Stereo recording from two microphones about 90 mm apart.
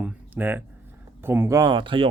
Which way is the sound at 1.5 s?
40° right (ahead or behind).